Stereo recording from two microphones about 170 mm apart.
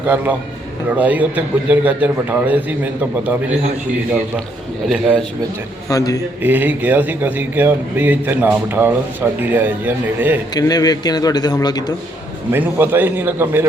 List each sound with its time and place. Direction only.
0.9 s a man's voice: 10° right (ahead or behind)
4.9 s a man's voice: 5° right (ahead or behind)
5.9 s a man's voice: 20° left (ahead or behind)
6.4 s a man's voice: 10° right (ahead or behind)
10.5 s a man's voice: 20° left (ahead or behind)
12.5 s a man's voice: 10° right (ahead or behind)